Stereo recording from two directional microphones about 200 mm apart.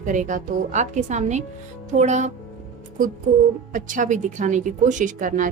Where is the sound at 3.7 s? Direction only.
40° right (ahead or behind).